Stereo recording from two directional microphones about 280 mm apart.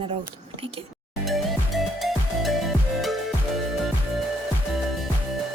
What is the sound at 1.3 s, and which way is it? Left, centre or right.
Music, centre.